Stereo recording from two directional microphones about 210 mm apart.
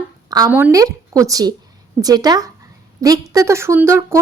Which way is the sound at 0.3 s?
15° right (ahead or behind).